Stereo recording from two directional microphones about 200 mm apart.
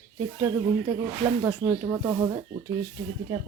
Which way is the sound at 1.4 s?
10° right (ahead or behind).